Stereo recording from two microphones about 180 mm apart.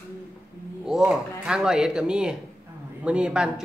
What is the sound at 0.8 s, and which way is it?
Speech, 5° right (ahead or behind).